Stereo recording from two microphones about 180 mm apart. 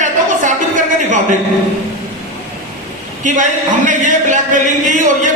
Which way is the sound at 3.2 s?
45° right (ahead or behind).